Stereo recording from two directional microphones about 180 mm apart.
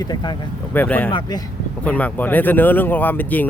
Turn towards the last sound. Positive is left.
turn(degrees=10)  # may be behind; listen again after turning